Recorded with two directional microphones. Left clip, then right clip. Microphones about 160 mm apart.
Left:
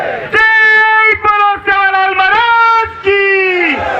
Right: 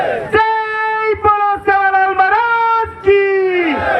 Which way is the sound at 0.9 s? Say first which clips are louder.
Left 5 dB; 5° right (ahead or behind).